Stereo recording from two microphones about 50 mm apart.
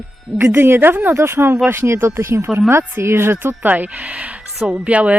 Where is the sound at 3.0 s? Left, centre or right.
Right.